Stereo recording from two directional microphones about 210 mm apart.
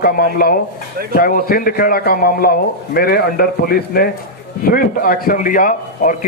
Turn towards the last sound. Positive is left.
turn(degrees=40)  # may be behind; listen again after turning